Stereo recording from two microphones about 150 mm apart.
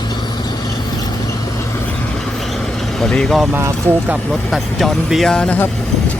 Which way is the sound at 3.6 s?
20° right (ahead or behind).